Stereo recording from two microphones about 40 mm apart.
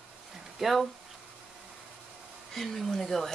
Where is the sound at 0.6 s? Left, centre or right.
Centre.